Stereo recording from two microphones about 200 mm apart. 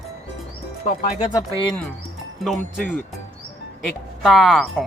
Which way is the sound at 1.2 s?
25° left (ahead or behind).